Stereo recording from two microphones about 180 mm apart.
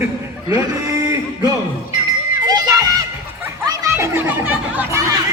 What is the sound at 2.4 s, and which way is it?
Chatter, 20° right (ahead or behind).